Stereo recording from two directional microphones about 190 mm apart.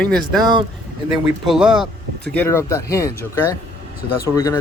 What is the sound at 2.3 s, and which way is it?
Speech, 10° left (ahead or behind).